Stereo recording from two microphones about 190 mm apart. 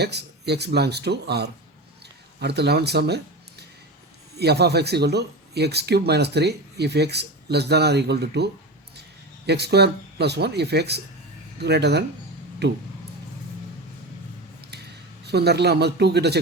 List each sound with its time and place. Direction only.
0.0 s speech: 60° right (ahead or behind)
4.4 s speech: 60° right (ahead or behind)
9.5 s speech: 60° right (ahead or behind)
15.3 s speech: 60° right (ahead or behind)